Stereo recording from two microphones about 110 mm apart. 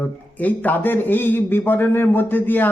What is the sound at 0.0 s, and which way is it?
Speech, 15° left (ahead or behind).